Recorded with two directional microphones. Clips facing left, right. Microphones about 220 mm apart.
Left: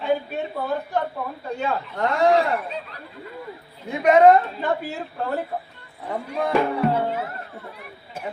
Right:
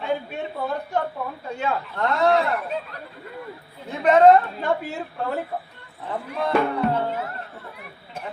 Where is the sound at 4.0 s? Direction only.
10° left (ahead or behind).